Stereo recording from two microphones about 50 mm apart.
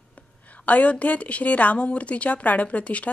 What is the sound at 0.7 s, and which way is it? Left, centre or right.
A woman's voice, left.